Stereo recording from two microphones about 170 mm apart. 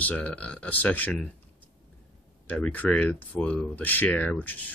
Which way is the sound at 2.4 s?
10° left (ahead or behind).